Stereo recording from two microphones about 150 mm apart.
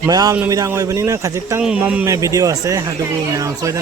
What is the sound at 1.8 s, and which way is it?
Speech, 5° right (ahead or behind).